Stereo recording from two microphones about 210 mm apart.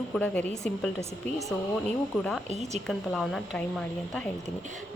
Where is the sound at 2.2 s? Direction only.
Centre (ahead or behind).